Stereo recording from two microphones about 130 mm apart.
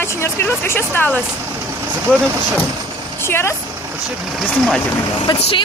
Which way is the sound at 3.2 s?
20° left (ahead or behind).